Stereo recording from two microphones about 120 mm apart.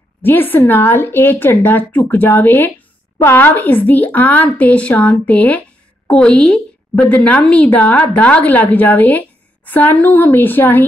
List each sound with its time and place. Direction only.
0.2 s a woman's voice: 15° left (ahead or behind)